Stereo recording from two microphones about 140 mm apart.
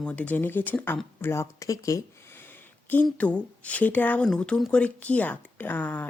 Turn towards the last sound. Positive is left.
turn(degrees=10)  # may be behind; listen again after turning